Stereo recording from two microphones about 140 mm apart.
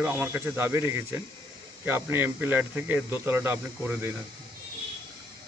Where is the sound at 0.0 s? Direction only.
15° right (ahead or behind).